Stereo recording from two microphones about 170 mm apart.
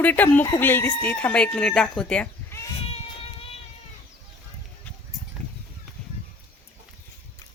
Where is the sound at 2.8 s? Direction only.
35° left (ahead or behind).